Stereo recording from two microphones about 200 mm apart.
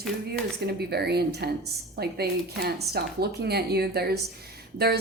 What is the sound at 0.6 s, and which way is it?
A woman's voice, 55° right (ahead or behind).